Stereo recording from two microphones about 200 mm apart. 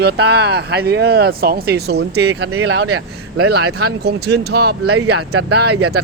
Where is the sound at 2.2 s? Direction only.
75° right (ahead or behind); by 3.4 s 90° right.